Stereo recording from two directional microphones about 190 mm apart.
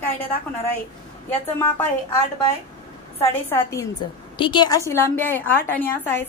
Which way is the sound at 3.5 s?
15° left (ahead or behind).